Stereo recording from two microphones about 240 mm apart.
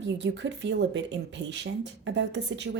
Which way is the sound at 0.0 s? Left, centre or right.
Right.